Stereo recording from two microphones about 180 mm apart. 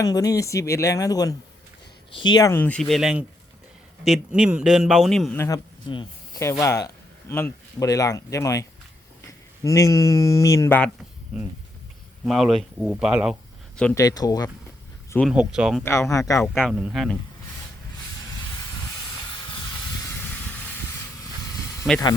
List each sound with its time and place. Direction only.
0.0 s a man's voice: 20° left (ahead or behind); by 5.4 s centre (ahead or behind)
5.4 s speech: 25° left (ahead or behind)
12.2 s a man's voice: centre (ahead or behind)
13.9 s speech: 20° left (ahead or behind)
15.3 s a man's voice: 5° right (ahead or behind)
15.8 s speech: 15° left (ahead or behind)
16.4 s a man's voice: 5° left (ahead or behind)